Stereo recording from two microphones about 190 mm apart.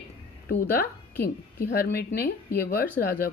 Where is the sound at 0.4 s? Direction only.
50° left (ahead or behind).